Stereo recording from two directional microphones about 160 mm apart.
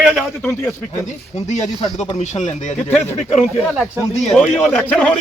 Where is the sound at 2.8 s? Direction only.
15° left (ahead or behind).